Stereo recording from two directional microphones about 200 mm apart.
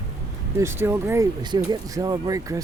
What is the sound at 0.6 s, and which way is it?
Speech, 10° right (ahead or behind).